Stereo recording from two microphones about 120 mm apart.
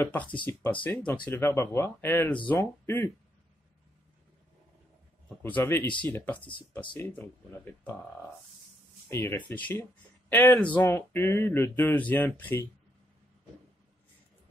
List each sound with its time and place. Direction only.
0.0 s speech: 10° left (ahead or behind)
5.4 s speech: 15° left (ahead or behind)
9.1 s speech: 20° left (ahead or behind)